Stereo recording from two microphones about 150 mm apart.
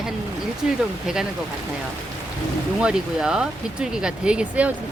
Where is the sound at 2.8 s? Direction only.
5° right (ahead or behind).